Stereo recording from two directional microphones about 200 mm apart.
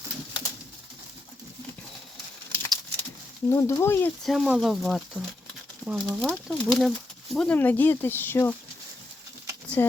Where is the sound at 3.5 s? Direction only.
15° left (ahead or behind).